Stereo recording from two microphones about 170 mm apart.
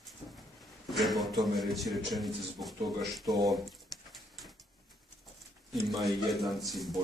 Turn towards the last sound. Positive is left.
turn(degrees=0)  # may be behind; listen again after turning